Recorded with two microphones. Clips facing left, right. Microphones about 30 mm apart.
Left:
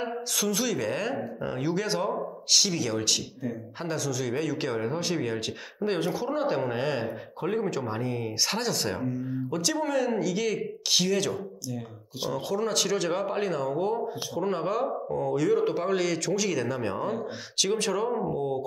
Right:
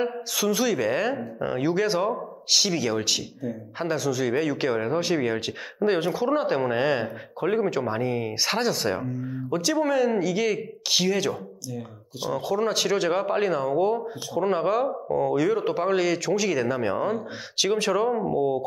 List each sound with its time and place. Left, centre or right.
0.0 s speech: centre
9.0 s speech: centre
11.7 s speech: centre